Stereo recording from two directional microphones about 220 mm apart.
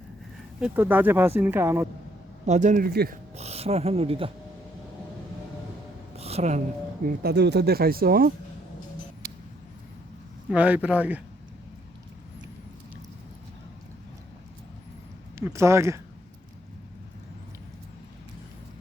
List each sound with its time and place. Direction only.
0.6 s speech: 10° right (ahead or behind)
2.5 s speech: 35° right (ahead or behind)
3.3 s speech: 30° right (ahead or behind)
6.1 s a sound: 30° right (ahead or behind)
7.0 s speech: 45° right (ahead or behind)
10.5 s speech: 5° right (ahead or behind)
15.4 s speech: 10° right (ahead or behind)